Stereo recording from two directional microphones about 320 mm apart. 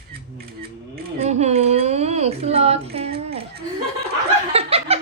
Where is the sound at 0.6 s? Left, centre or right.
Right.